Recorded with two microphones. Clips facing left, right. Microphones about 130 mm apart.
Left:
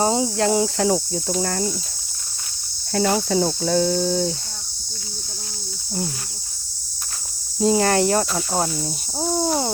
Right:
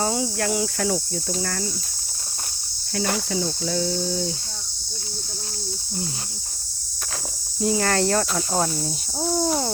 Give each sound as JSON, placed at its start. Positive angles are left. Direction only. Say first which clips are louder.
{"t": 0.0, "sound": "cricket", "louder": "left 5 dB", "side_deg": 25}
{"t": 1.3, "sound": "speech", "louder": "left 5 dB", "side_deg": 35}
{"t": 2.9, "sound": "speech", "louder": "left 6 dB", "side_deg": 45}
{"t": 7.6, "sound": "speech", "louder": "left 4 dB", "side_deg": 25}